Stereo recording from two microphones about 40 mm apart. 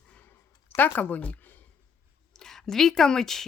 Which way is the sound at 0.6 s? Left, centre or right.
Left.